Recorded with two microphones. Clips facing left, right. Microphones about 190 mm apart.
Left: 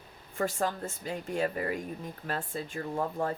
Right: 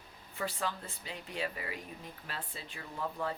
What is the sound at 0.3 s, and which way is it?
Speech, 50° left (ahead or behind).